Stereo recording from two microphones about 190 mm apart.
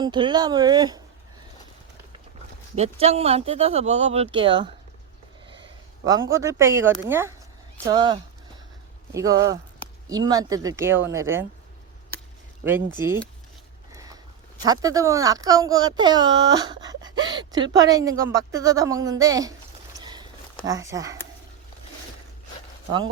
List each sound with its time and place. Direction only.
0.0 s speech: 25° right (ahead or behind)
2.7 s speech: 35° right (ahead or behind)
6.3 s a woman's voice: 15° right (ahead or behind)
13.0 s a woman's voice: 15° right (ahead or behind)
13.9 s a sound: 20° right (ahead or behind)
14.6 s a woman's voice: 20° right (ahead or behind)
20.0 s a sound: 25° right (ahead or behind)
20.7 s speech: 20° right (ahead or behind)